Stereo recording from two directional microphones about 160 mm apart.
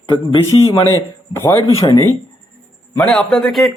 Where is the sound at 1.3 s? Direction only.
15° left (ahead or behind).